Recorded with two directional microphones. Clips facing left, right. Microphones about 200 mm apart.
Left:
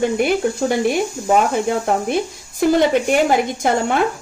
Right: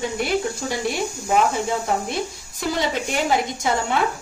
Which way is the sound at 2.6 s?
55° left (ahead or behind).